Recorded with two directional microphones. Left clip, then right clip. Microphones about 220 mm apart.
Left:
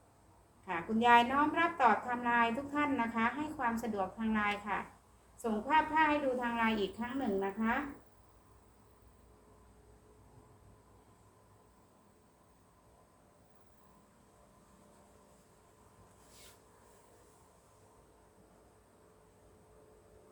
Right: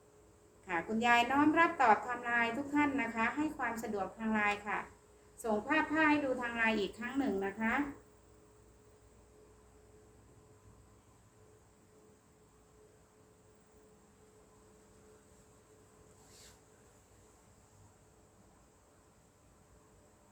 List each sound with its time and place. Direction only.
0.6 s a woman's voice: 15° right (ahead or behind)